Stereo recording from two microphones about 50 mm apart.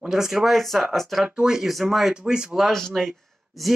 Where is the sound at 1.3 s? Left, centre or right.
Centre.